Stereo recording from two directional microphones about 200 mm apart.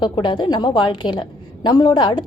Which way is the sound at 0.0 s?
25° left (ahead or behind).